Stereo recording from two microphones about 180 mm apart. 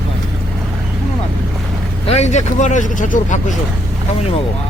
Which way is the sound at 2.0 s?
40° left (ahead or behind).